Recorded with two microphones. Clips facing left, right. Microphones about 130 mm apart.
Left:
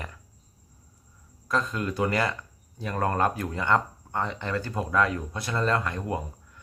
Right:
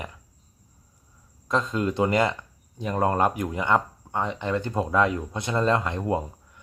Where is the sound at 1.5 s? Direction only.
20° right (ahead or behind).